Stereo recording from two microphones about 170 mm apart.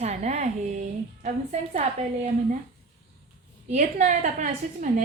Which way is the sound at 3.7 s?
45° right (ahead or behind).